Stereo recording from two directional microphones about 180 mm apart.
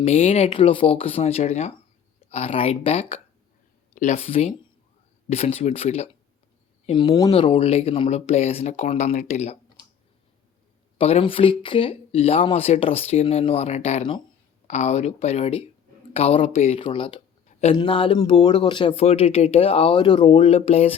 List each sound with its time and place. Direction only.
0.0 s speech: 35° left (ahead or behind)
10.9 s speech: 30° left (ahead or behind)